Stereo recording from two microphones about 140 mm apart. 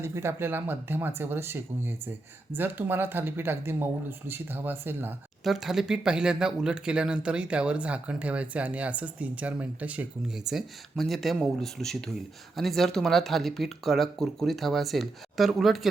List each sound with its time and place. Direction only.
0.0 s speech: 20° right (ahead or behind)
5.4 s speech: centre (ahead or behind)